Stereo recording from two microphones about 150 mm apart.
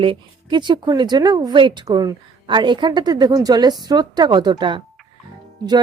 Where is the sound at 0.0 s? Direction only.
35° right (ahead or behind).